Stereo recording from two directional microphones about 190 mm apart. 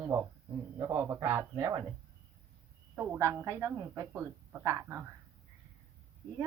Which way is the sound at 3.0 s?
15° right (ahead or behind).